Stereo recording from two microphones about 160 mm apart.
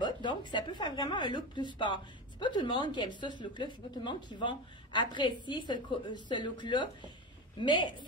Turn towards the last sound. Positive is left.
turn(degrees=30)  # may be behind; listen again after turning